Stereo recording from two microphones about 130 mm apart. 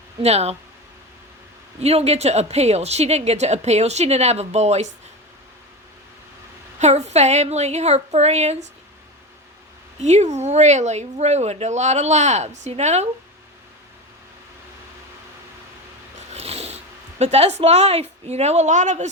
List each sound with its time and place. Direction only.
0.2 s speech: 55° right (ahead or behind)
1.8 s a woman's voice: 55° right (ahead or behind)
6.7 s a woman's voice: 60° right (ahead or behind)
10.0 s a woman's voice: 60° right (ahead or behind)
16.3 s a sound: 50° right (ahead or behind)
17.2 s a woman's voice: 55° right (ahead or behind)